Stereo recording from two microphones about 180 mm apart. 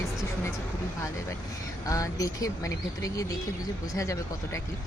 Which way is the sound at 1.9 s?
20° left (ahead or behind).